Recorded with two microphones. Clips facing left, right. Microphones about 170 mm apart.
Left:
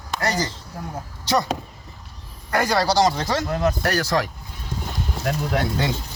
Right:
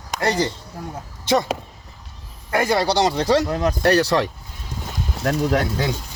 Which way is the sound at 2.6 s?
25° right (ahead or behind).